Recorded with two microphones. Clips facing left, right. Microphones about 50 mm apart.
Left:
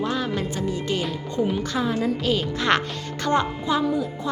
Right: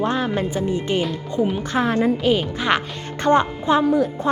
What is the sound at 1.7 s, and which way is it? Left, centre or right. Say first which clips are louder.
Speech: right 7 dB; right.